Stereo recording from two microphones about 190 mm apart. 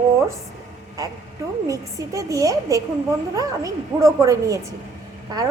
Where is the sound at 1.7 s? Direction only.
15° right (ahead or behind).